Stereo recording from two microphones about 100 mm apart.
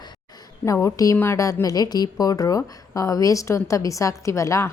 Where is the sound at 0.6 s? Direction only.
30° left (ahead or behind).